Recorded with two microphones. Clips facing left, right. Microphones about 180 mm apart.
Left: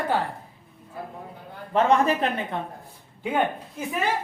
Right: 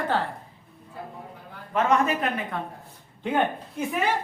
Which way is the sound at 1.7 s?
30° left (ahead or behind).